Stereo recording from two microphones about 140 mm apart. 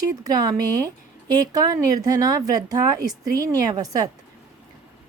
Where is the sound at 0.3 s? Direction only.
25° right (ahead or behind).